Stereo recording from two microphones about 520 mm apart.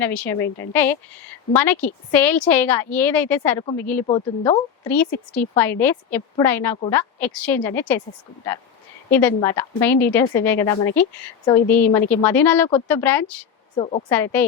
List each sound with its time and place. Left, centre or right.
0.0 s a woman's voice: centre
9.0 s a woman's voice: centre